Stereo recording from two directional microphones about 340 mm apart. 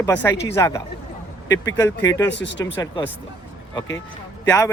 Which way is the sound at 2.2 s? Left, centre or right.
Left.